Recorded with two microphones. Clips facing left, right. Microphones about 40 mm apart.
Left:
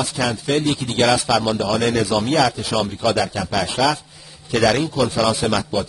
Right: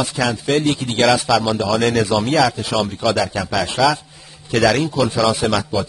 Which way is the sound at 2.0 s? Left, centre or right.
Centre.